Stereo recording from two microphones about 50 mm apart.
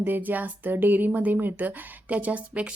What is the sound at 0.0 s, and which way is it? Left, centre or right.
Speech, right.